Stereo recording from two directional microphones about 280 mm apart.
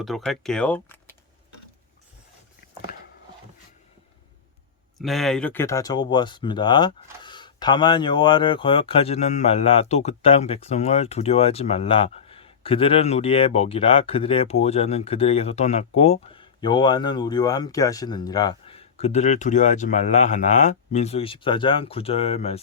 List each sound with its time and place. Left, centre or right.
0.0 s speech: centre
4.9 s speech: centre; by 22.6 s left